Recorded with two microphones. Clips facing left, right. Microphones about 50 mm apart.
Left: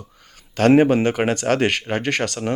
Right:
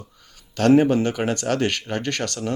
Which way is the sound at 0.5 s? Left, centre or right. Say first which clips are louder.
Left 2 dB; left.